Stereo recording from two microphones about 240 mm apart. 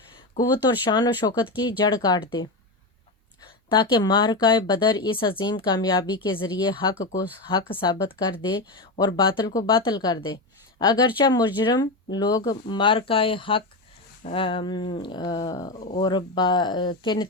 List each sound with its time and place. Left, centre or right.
0.9 s speech: centre
3.7 s a woman's voice: centre